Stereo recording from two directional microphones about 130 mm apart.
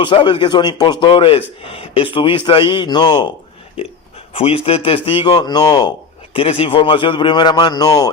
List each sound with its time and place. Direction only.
0.0 s a man's voice: 35° left (ahead or behind)
4.4 s a man's voice: 45° left (ahead or behind)
5.0 s a man's voice: 35° left (ahead or behind)
6.3 s a man's voice: 45° left (ahead or behind); by 8.1 s 30° left (ahead or behind)